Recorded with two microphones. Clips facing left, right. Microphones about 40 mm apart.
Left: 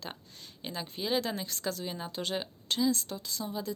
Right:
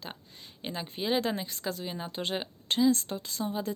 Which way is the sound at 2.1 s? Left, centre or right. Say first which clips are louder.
Right 2 dB; right.